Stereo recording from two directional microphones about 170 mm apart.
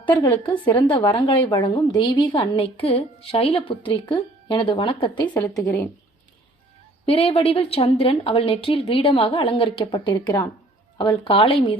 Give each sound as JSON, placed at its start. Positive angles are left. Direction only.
{"t": 0.0, "sound": "a woman's voice", "side_deg": 30}
{"t": 5.6, "sound": "speech", "side_deg": 15}
{"t": 7.0, "sound": "a woman's voice", "side_deg": 35}